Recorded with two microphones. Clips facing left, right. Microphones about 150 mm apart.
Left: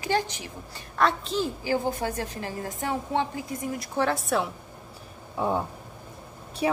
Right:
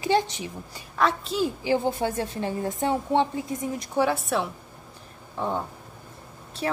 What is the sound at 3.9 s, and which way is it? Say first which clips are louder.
A woman's voice: right 1 dB; 10° right (ahead or behind).